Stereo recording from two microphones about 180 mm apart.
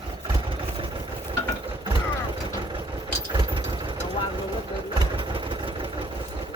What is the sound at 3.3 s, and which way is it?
Vehicle, 30° right (ahead or behind).